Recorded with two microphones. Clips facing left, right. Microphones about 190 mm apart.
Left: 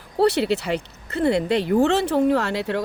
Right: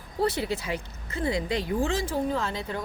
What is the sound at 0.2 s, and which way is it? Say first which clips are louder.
Speech: left 8 dB; 75° left (ahead or behind).